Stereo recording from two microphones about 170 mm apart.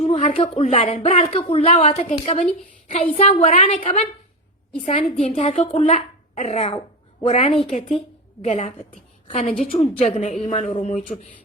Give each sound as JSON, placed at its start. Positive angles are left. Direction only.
{"t": 0.0, "sound": "speech", "side_deg": 40}
{"t": 5.2, "sound": "a woman's voice", "side_deg": 35}